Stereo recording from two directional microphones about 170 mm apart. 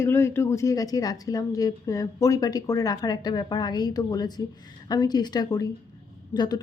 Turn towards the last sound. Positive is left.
turn(degrees=25)  # may be behind; listen again after turning